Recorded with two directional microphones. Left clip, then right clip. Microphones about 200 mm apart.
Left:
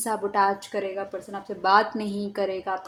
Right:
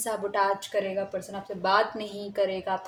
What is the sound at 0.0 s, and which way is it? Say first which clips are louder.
A woman's voice: left 3 dB; 30° left (ahead or behind).